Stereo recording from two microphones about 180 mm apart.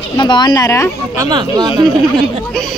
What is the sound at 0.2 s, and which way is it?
Speech, 25° left (ahead or behind).